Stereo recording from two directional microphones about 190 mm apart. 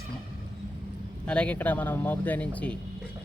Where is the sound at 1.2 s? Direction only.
5° left (ahead or behind).